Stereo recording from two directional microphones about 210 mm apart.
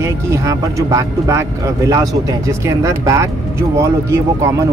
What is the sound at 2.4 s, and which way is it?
Speech, 15° right (ahead or behind).